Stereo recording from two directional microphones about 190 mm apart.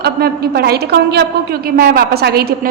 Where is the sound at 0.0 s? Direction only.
55° right (ahead or behind).